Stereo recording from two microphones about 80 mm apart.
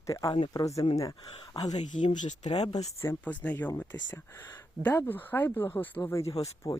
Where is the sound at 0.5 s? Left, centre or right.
Left.